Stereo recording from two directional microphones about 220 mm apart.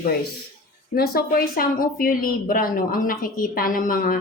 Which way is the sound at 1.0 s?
45° left (ahead or behind).